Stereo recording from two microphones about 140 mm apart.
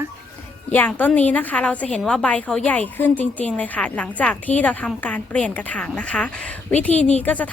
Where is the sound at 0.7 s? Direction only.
10° left (ahead or behind).